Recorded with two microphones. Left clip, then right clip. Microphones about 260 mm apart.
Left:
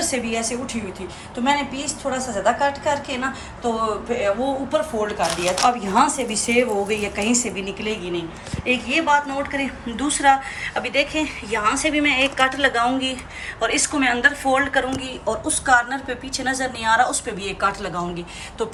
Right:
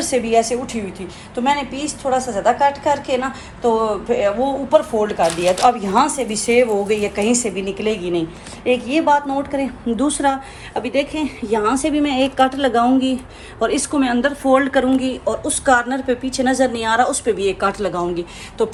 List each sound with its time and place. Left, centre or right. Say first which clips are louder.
0.0 s a woman's voice: right 7 dB; centre
8.6 s a woman's voice: right 4 dB; centre